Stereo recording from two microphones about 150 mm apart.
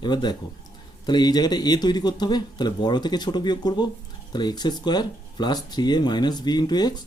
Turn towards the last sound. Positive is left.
turn(degrees=30)  # may be behind; listen again after turning